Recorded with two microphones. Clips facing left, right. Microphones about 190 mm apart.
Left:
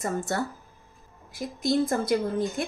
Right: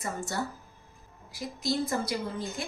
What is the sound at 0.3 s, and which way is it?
A woman's voice, 55° left (ahead or behind).